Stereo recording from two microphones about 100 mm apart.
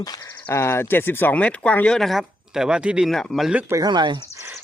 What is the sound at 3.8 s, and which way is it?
Speech, 45° right (ahead or behind).